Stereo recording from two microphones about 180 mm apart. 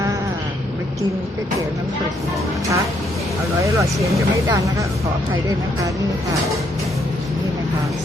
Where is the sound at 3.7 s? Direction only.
15° right (ahead or behind).